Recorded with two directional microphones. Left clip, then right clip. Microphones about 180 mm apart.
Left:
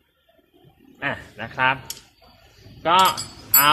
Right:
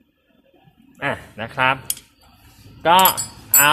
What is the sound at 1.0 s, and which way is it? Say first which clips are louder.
Speech: right 3 dB; 50° right (ahead or behind).